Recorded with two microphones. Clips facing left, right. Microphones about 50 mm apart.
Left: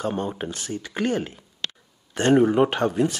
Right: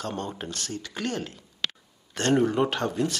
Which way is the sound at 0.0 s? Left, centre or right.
Centre.